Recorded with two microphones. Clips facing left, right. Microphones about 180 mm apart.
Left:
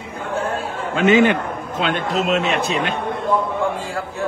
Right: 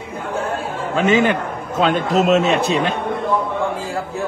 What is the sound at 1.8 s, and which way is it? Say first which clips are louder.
A man's voice: right 5 dB; 45° right (ahead or behind).